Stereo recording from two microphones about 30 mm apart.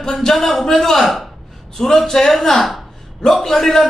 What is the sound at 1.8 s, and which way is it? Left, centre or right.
A man's voice, centre.